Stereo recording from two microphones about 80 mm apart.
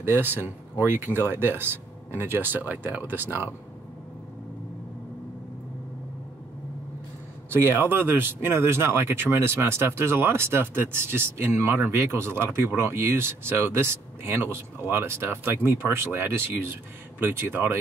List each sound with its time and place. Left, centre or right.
0.0 s speech: right
7.5 s speech: right